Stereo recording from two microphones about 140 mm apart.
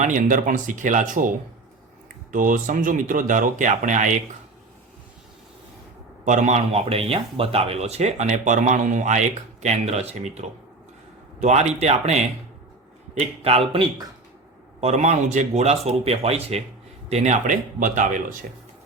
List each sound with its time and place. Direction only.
0.0 s speech: 65° right (ahead or behind)
6.2 s a man's voice: 60° right (ahead or behind)